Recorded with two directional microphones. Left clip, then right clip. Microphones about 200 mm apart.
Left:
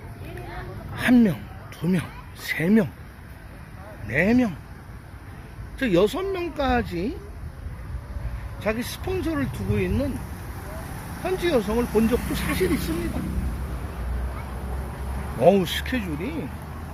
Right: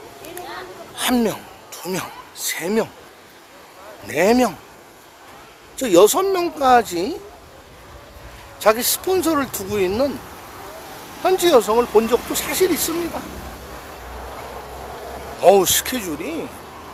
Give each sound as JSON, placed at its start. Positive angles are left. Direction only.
{"t": 0.9, "sound": "speech", "side_deg": -15}
{"t": 4.1, "sound": "speech", "side_deg": -25}
{"t": 5.7, "sound": "speech", "side_deg": -25}
{"t": 8.6, "sound": "speech", "side_deg": -30}
{"t": 11.2, "sound": "speech", "side_deg": -25}
{"t": 15.4, "sound": "speech", "side_deg": -25}